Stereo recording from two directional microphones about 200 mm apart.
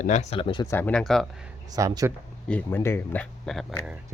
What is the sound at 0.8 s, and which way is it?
Speech, 5° left (ahead or behind).